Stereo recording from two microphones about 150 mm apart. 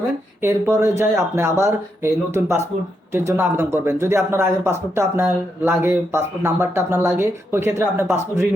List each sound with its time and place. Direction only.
0.4 s a man's voice: 15° right (ahead or behind)